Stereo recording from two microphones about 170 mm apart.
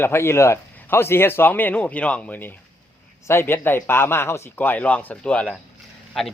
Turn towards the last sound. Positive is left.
turn(degrees=0)  # may be behind; listen again after turning